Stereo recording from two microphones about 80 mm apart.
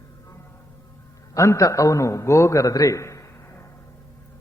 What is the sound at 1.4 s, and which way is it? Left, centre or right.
A man's voice, left.